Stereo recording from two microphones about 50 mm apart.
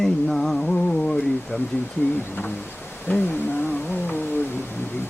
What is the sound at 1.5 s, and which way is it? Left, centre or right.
Speech, left.